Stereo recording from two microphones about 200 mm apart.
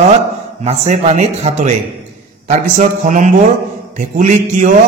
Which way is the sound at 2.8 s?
40° right (ahead or behind).